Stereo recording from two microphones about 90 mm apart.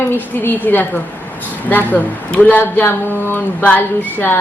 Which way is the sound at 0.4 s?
20° left (ahead or behind).